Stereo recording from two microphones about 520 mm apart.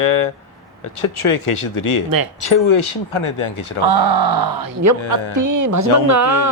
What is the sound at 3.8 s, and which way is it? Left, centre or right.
Speech, right.